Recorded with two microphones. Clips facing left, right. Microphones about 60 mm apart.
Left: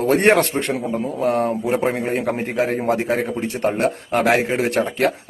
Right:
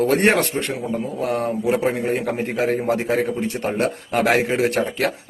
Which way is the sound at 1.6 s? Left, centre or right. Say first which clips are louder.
Right 4 dB; left.